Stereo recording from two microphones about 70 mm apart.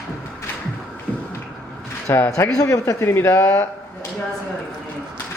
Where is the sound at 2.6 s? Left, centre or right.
Left.